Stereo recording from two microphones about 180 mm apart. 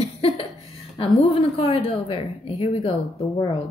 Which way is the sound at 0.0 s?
35° left (ahead or behind).